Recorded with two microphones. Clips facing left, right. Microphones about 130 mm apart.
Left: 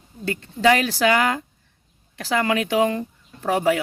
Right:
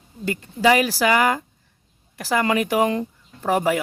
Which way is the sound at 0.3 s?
10° right (ahead or behind).